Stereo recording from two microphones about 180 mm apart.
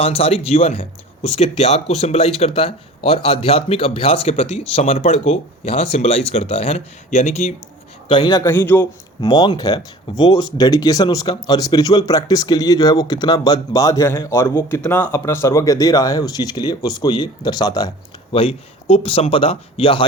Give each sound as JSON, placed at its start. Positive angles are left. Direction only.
{"t": 0.0, "sound": "speech", "side_deg": 35}
{"t": 8.0, "sound": "a man's voice", "side_deg": 30}
{"t": 8.4, "sound": "a man's voice", "side_deg": 10}
{"t": 9.2, "sound": "speech", "side_deg": 25}